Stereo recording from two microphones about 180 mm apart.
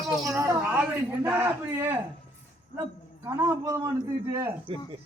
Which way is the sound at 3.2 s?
15° right (ahead or behind).